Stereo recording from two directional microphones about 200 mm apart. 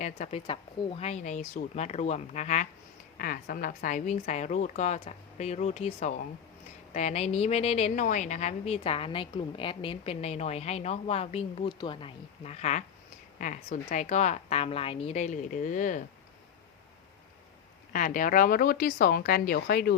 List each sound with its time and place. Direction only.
0.0 s a woman's voice: 30° left (ahead or behind)
17.9 s speech: 40° left (ahead or behind)